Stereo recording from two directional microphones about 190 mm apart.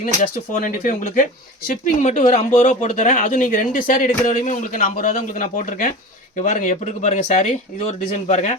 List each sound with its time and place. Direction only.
0.0 s speech: 45° left (ahead or behind)